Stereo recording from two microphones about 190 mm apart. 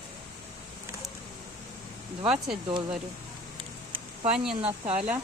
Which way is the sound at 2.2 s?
Centre (ahead or behind).